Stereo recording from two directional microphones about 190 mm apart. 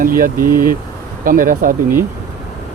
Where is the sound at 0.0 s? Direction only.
50° right (ahead or behind).